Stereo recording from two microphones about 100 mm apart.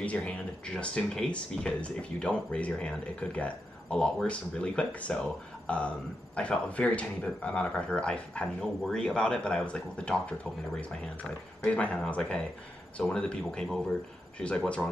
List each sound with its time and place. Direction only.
0.0 s speech: 15° left (ahead or behind)
11.6 s speech: 10° left (ahead or behind)